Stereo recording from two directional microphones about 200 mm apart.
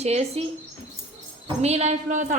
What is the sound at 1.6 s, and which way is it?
Speech, 35° right (ahead or behind).